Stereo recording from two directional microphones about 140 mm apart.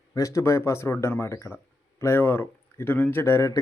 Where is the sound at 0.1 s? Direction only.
25° left (ahead or behind).